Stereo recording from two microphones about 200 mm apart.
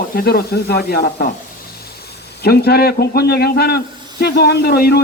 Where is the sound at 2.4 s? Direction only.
55° left (ahead or behind).